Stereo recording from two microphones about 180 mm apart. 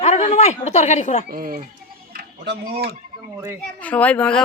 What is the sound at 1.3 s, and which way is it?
Speech, 50° right (ahead or behind).